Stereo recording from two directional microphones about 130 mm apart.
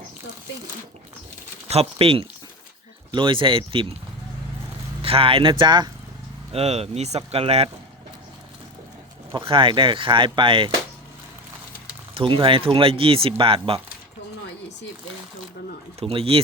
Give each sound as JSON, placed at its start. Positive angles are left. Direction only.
{"t": 1.6, "sound": "speech", "side_deg": -50}
{"t": 5.0, "sound": "speech", "side_deg": -45}
{"t": 6.5, "sound": "speech", "side_deg": -55}
{"t": 9.5, "sound": "speech", "side_deg": -40}
{"t": 12.1, "sound": "speech", "side_deg": -40}
{"t": 16.0, "sound": "speech", "side_deg": -50}